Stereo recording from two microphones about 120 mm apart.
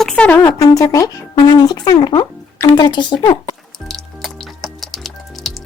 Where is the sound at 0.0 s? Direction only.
5° left (ahead or behind).